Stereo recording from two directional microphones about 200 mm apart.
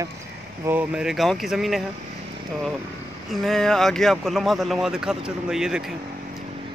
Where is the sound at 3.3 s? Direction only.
Centre (ahead or behind).